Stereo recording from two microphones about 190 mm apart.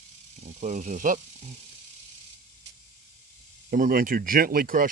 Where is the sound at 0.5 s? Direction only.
40° right (ahead or behind).